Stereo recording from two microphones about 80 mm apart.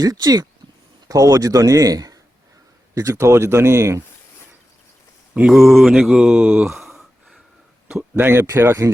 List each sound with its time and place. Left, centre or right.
0.0 s speech: right
5.5 s speech: centre
8.1 s speech: right